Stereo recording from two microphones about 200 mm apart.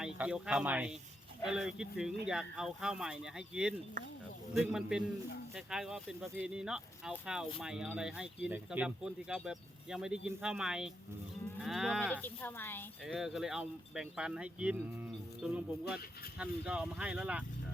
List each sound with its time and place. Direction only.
0.0 s speech: 5° right (ahead or behind)
13.1 s speech: centre (ahead or behind)